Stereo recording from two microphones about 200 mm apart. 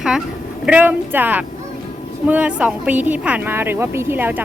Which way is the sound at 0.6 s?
10° right (ahead or behind).